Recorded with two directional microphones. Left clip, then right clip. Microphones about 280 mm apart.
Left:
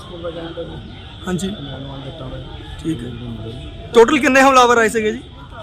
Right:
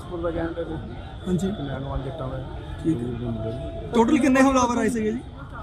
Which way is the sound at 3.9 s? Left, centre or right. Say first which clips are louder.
Left 9 dB; centre.